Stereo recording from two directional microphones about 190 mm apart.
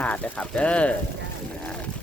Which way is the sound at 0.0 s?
5° left (ahead or behind).